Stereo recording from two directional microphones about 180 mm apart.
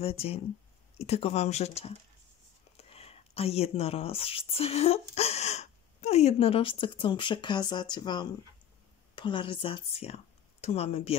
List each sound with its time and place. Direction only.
0.0 s speech: 35° left (ahead or behind)